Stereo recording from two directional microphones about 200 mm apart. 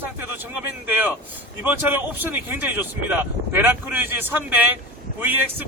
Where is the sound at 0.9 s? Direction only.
10° right (ahead or behind).